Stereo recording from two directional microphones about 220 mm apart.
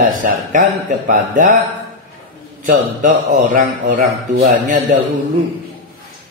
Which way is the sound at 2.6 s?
40° right (ahead or behind).